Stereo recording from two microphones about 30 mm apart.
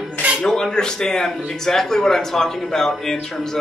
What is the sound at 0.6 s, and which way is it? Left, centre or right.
Speech, left.